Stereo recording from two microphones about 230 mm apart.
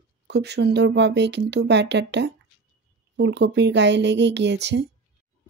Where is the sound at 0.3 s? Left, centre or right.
Right.